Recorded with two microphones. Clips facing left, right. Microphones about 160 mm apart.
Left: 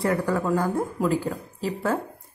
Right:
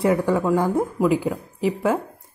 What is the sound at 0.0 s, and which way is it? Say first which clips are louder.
A woman's voice: right 4 dB; 20° right (ahead or behind).